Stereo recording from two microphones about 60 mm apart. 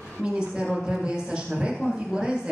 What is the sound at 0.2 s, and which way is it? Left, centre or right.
A woman's voice, centre.